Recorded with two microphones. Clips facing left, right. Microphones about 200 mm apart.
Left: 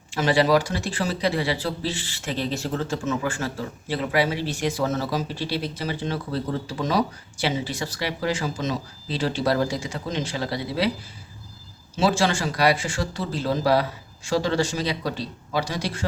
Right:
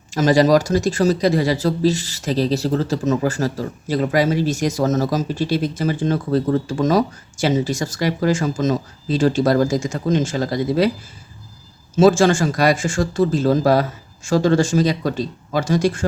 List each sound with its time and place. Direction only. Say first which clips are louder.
0.1 s speech: right 6 dB; 40° right (ahead or behind)
11.9 s speech: right 9 dB; 45° right (ahead or behind)